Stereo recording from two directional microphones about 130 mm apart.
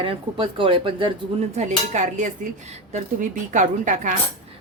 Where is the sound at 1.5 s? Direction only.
65° right (ahead or behind).